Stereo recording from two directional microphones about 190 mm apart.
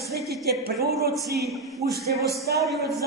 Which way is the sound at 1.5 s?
Centre (ahead or behind).